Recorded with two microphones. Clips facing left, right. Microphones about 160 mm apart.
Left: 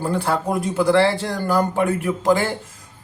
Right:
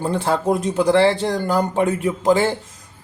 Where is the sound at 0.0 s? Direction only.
20° right (ahead or behind).